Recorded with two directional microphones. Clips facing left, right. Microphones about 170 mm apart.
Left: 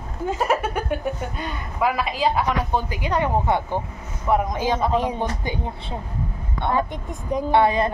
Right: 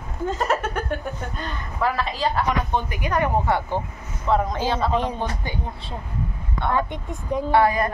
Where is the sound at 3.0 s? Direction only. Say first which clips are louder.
Right 1 dB; 20° left (ahead or behind).